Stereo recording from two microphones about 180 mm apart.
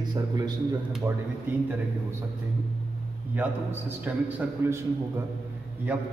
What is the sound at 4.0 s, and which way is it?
Speech, 10° right (ahead or behind).